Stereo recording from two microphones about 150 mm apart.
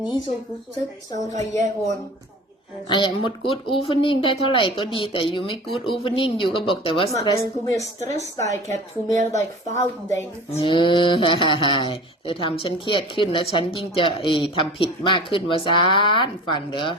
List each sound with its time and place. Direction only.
2.9 s speech: 30° left (ahead or behind)
7.1 s a woman's voice: 20° left (ahead or behind)
8.0 s a woman's voice: 50° right (ahead or behind)
10.1 s speech: 15° left (ahead or behind)
10.6 s speech: 35° left (ahead or behind)